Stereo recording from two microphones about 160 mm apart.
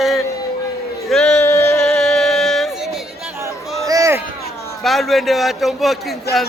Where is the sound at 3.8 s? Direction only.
20° right (ahead or behind).